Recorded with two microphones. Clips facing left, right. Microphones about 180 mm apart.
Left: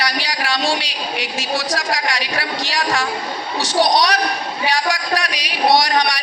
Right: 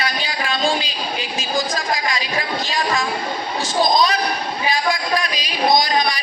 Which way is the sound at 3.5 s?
75° left (ahead or behind).